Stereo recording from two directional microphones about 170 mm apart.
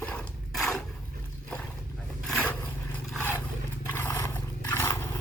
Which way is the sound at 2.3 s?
5° left (ahead or behind).